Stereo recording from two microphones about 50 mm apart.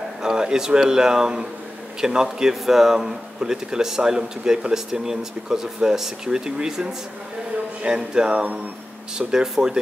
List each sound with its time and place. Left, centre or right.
0.2 s speech: centre
7.8 s music: centre
9.2 s speech: centre